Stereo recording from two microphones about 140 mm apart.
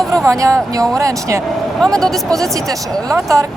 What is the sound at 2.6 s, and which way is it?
Speech, 25° right (ahead or behind).